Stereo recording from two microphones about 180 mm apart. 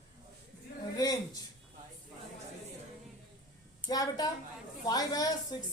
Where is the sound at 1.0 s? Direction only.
20° left (ahead or behind).